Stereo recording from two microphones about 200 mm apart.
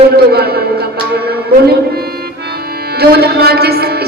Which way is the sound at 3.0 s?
50° right (ahead or behind).